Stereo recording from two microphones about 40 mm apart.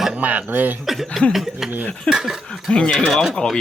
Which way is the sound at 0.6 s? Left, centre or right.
Right.